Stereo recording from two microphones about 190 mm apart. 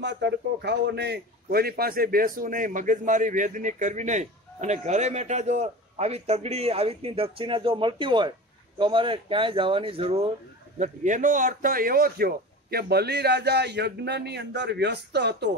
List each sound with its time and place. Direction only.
0.0 s a man's voice: 65° right (ahead or behind); by 10.2 s 30° right (ahead or behind)
10.8 s a man's voice: 40° right (ahead or behind); by 15.5 s 65° right (ahead or behind)